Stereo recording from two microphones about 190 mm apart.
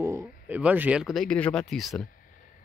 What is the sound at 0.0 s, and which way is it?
Speech, 15° right (ahead or behind).